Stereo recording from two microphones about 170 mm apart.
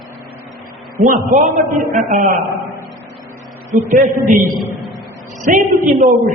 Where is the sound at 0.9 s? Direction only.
50° right (ahead or behind).